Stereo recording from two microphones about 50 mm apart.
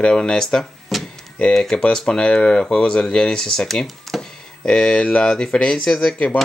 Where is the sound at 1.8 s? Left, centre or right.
Centre.